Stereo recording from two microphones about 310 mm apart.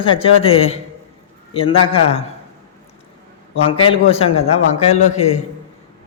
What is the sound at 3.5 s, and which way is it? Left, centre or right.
Speech, centre.